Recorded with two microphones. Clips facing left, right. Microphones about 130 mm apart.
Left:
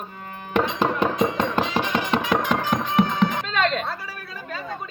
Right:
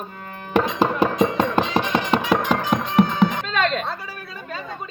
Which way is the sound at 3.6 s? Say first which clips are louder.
Right 1 dB; 20° right (ahead or behind).